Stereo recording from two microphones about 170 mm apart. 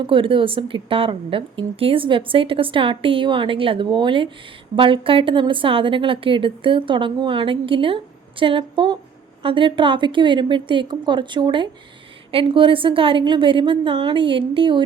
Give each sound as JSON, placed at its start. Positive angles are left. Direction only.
{"t": 0.0, "sound": "a woman's voice", "side_deg": -30}